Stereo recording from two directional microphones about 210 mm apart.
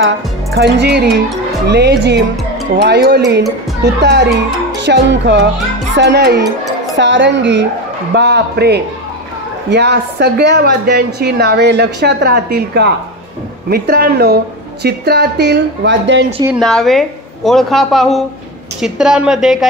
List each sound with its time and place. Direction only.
0.6 s a woman's voice: 55° right (ahead or behind)
16.5 s a woman's voice: centre (ahead or behind)